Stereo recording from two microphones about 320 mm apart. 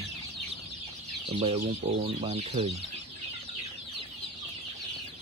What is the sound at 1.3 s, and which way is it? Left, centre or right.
Speech, centre.